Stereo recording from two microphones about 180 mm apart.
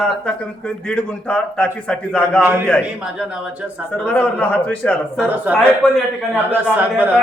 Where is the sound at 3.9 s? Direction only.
5° left (ahead or behind).